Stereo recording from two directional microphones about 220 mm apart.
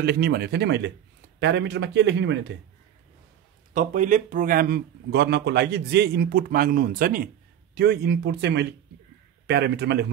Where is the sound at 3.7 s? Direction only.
35° right (ahead or behind).